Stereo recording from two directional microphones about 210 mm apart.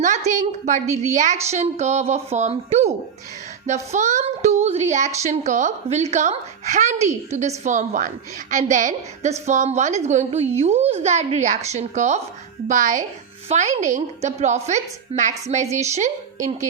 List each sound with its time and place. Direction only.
0.6 s a woman's voice: 35° right (ahead or behind)